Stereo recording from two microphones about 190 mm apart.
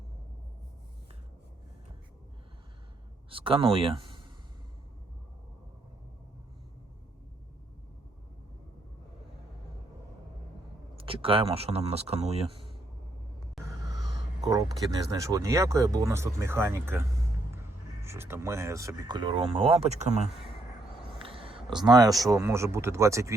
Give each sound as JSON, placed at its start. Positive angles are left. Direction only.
{"t": 3.2, "sound": "speech", "side_deg": -30}
{"t": 10.9, "sound": "speech", "side_deg": -30}
{"t": 13.6, "sound": "a sound", "side_deg": 0}
{"t": 14.4, "sound": "speech", "side_deg": -20}
{"t": 21.2, "sound": "a sound", "side_deg": -30}
{"t": 22.3, "sound": "speech", "side_deg": -15}